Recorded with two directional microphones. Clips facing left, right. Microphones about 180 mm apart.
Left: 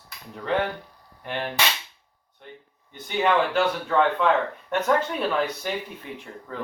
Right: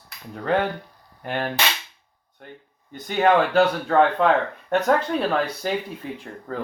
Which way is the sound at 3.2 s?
40° right (ahead or behind).